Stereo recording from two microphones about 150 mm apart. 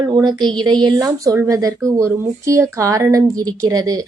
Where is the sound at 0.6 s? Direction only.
30° right (ahead or behind).